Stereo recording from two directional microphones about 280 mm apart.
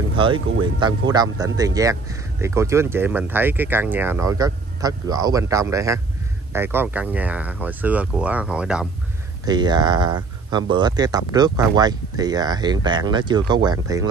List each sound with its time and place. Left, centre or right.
0.1 s speech: centre
9.5 s speech: centre